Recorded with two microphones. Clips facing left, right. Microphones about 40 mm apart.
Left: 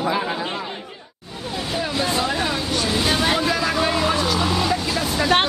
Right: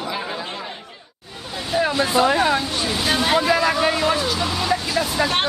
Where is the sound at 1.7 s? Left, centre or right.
Centre.